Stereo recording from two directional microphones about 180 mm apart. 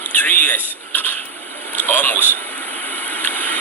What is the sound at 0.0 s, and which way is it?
Vehicle, 10° left (ahead or behind).